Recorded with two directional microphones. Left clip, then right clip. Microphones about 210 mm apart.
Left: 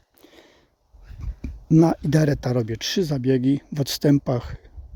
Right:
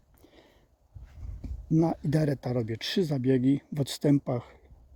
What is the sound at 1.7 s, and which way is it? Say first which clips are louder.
Speech: left 8 dB; 20° left (ahead or behind).